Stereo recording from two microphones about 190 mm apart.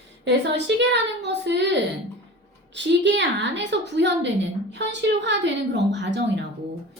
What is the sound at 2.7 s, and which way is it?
Speech, 70° right (ahead or behind).